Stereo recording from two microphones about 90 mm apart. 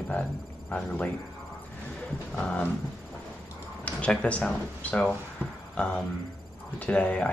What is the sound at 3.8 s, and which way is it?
Speech, 15° left (ahead or behind).